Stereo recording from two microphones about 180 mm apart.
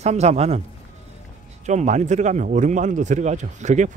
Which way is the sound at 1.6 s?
40° right (ahead or behind).